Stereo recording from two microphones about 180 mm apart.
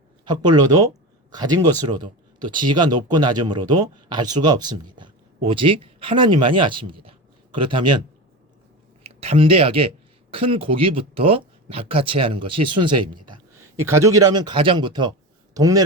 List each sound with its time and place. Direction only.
0.3 s speech: 20° right (ahead or behind)
9.0 s speech: 35° right (ahead or behind)
13.7 s speech: 15° right (ahead or behind)